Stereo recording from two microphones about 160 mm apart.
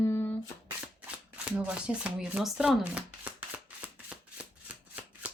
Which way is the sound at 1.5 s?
5° right (ahead or behind).